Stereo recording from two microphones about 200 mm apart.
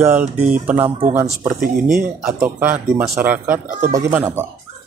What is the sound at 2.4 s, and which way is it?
Speech, 10° right (ahead or behind).